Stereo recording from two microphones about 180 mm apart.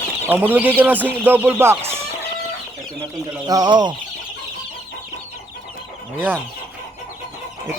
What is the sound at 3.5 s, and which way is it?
Speech, 25° right (ahead or behind).